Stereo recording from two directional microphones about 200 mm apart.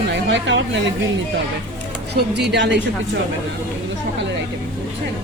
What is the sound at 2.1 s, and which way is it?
Speech, 55° right (ahead or behind).